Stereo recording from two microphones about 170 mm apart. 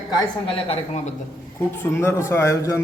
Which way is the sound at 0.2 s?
35° left (ahead or behind).